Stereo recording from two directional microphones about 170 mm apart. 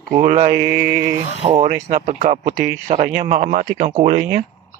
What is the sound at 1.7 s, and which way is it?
A man's voice, 45° right (ahead or behind).